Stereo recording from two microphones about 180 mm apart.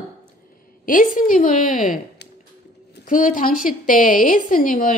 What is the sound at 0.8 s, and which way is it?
A woman's voice, 50° left (ahead or behind).